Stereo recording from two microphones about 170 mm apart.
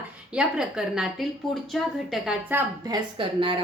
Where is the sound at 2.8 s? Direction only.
25° right (ahead or behind).